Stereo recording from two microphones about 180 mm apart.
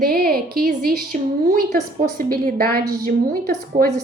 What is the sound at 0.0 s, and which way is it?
A woman's voice, 55° right (ahead or behind).